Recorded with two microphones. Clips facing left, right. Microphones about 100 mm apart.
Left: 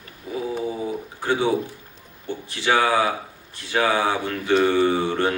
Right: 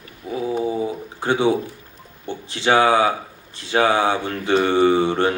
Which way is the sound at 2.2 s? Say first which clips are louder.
Right 3 dB; 30° right (ahead or behind).